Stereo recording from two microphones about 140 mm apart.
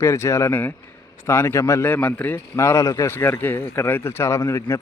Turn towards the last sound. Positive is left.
turn(degrees=20)  # may be behind; listen again after turning